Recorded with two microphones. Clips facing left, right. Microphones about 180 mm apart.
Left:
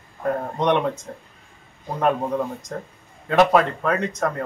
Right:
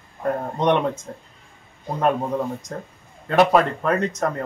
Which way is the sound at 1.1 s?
Centre (ahead or behind).